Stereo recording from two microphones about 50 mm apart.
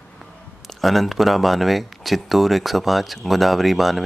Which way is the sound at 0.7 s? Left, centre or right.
Centre.